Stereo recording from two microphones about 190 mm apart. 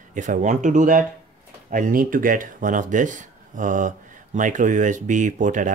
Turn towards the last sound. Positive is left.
turn(degrees=-40)  # may be behind; listen again after turning